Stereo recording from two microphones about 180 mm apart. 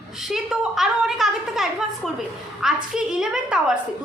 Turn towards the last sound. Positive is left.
turn(degrees=-5)  # may be behind; listen again after turning